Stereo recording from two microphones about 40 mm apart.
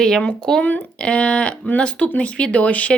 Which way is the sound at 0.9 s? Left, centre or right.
Left.